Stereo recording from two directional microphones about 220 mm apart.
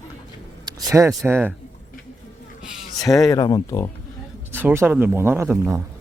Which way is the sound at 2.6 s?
Centre (ahead or behind).